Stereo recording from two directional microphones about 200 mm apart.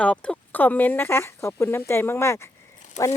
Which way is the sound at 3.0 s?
35° left (ahead or behind).